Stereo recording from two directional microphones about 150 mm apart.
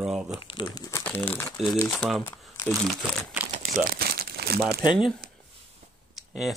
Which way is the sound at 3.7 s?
70° right (ahead or behind).